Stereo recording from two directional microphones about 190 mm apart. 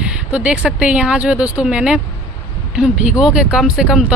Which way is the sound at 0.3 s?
5° right (ahead or behind).